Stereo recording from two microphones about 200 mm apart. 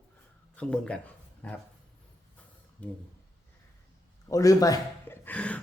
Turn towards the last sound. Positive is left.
turn(degrees=5)  # may be behind; listen again after turning